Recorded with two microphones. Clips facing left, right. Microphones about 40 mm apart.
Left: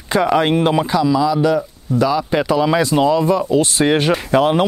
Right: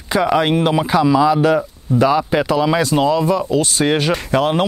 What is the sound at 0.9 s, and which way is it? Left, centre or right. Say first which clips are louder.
Speech: right 2 dB; right.